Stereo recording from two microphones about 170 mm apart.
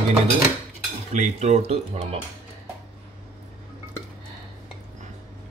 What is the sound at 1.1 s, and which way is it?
Speech, 40° right (ahead or behind).